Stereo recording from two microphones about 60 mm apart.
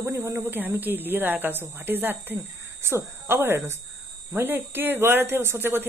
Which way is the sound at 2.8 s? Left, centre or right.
Right.